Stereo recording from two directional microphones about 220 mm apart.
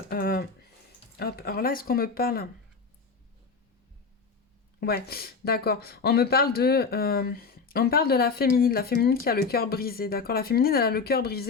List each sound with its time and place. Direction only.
0.1 s a sound: 40° left (ahead or behind)
1.2 s speech: 45° left (ahead or behind)
4.8 s speech: 45° left (ahead or behind)